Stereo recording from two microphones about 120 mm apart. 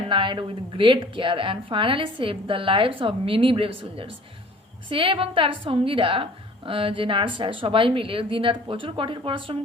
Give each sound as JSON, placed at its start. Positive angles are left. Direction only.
{"t": 0.1, "sound": "a woman's voice", "side_deg": -45}